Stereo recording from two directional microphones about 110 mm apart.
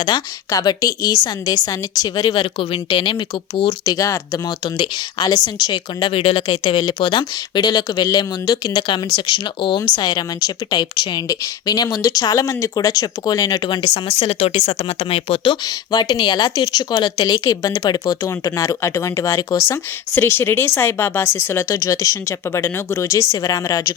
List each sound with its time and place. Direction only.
0.1 s speech: 40° left (ahead or behind)
2.4 s speech: 55° left (ahead or behind)
3.9 s speech: 30° left (ahead or behind)
4.6 s speech: 45° left (ahead or behind)
14.3 s speech: 65° left (ahead or behind)
14.9 s speech: 60° left (ahead or behind)
15.6 s speech: 40° left (ahead or behind)
17.4 s speech: 30° left (ahead or behind)